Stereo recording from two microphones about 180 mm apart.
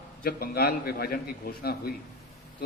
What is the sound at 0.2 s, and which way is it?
A man's voice, 55° left (ahead or behind).